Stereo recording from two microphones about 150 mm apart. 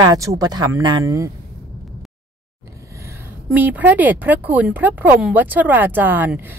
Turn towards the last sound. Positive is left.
turn(degrees=-10)  # may be behind; listen again after turning